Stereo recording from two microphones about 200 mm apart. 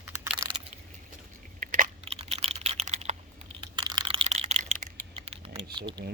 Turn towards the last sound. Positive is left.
turn(degrees=-20)  # may be behind; listen again after turning